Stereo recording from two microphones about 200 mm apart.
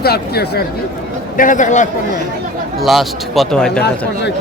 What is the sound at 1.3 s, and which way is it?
Speech, 40° left (ahead or behind).